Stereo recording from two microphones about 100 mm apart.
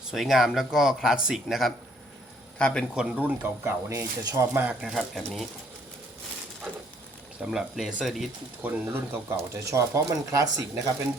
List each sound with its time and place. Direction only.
0.0 s speech: 5° right (ahead or behind)
2.6 s speech: 10° left (ahead or behind)
2.9 s speech: 10° right (ahead or behind)
3.8 s speech: 35° right (ahead or behind)
4.5 s speech: 15° right (ahead or behind)
4.9 s speech: centre (ahead or behind)
7.5 s speech: 5° right (ahead or behind)
8.6 s speech: 20° right (ahead or behind)